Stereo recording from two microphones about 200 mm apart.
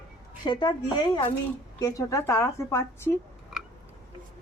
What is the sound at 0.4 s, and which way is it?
A woman's voice, 20° left (ahead or behind).